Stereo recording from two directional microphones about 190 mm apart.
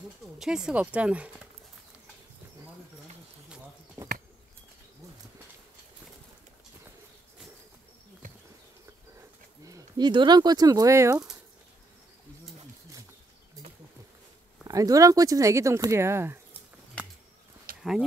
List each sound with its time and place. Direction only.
0.4 s speech: 5° right (ahead or behind)
3.4 s a sound: 5° right (ahead or behind)
9.7 s speech: 20° right (ahead or behind)
14.7 s speech: 20° right (ahead or behind)